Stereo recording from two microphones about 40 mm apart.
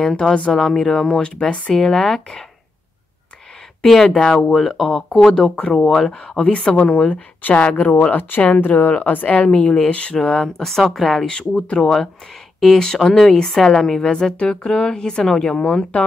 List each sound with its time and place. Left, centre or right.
0.0 s a woman's voice: centre
1.2 s a woman's voice: left
3.8 s a woman's voice: centre
6.1 s speech: left
7.4 s speech: left
9.5 s speech: left
10.4 s a woman's voice: centre
11.2 s a woman's voice: centre